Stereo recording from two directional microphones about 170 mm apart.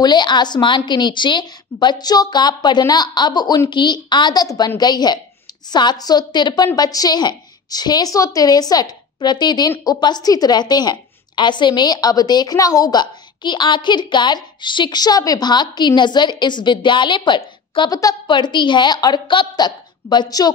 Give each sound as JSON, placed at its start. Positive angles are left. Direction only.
{"t": 0.0, "sound": "a woman's voice", "side_deg": 25}